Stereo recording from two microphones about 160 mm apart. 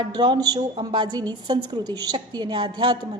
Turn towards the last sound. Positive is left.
turn(degrees=-25)  # may be behind; listen again after turning